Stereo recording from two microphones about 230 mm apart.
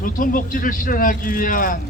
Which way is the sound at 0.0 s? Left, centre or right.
Left.